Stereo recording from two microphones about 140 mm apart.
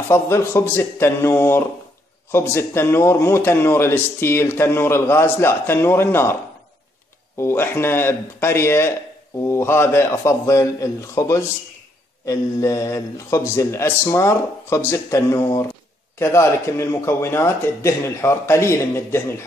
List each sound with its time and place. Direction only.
0.1 s a man's voice: 20° left (ahead or behind)
7.3 s a man's voice: 15° left (ahead or behind)